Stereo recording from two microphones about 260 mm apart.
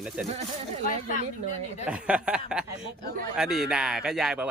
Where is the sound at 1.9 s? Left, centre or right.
Centre.